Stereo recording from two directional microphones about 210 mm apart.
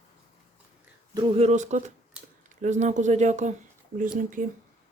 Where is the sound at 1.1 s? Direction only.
30° right (ahead or behind).